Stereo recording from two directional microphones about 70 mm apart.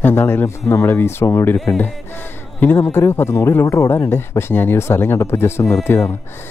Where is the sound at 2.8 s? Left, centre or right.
Left.